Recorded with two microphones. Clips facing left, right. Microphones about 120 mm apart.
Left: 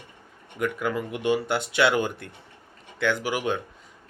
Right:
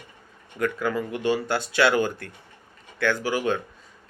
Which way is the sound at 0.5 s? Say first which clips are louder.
Right 1 dB; 15° left (ahead or behind).